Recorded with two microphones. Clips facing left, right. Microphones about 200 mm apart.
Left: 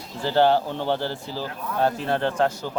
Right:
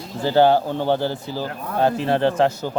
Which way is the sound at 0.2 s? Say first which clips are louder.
Right 4 dB; 10° right (ahead or behind).